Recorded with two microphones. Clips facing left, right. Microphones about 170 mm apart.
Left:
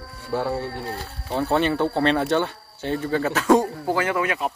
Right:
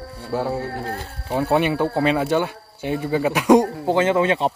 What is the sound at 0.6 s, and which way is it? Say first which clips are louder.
Speech: right 2 dB; 50° right (ahead or behind).